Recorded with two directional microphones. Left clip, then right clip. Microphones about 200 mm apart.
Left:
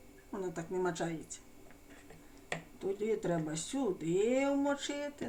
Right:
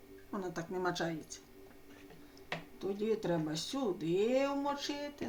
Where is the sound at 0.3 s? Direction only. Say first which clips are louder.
Left 1 dB; 20° right (ahead or behind).